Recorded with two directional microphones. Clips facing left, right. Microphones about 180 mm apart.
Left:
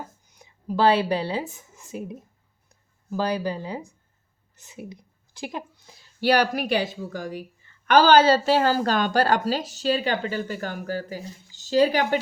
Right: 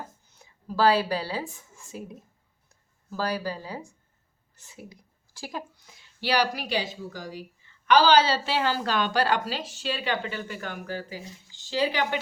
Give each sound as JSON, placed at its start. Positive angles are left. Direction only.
{"t": 0.3, "sound": "a woman's voice", "side_deg": 15}
{"t": 5.9, "sound": "a woman's voice", "side_deg": 40}